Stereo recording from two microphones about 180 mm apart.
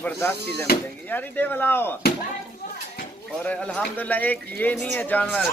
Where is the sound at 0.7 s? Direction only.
60° left (ahead or behind).